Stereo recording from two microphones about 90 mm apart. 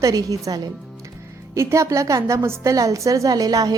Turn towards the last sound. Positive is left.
turn(degrees=-45)  # may be behind; listen again after turning